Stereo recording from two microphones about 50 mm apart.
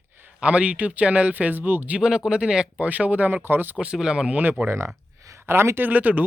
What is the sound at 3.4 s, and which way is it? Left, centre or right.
Speech, right.